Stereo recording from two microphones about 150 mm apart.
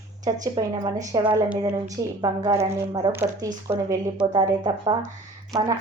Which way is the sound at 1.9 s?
25° right (ahead or behind).